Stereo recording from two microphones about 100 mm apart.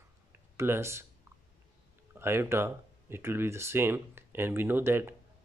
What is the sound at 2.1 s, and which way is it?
Speech, 25° right (ahead or behind).